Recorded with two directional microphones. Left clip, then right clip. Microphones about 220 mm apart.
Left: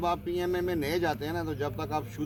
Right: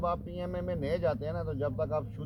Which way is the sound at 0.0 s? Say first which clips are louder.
Left 4 dB; 20° left (ahead or behind).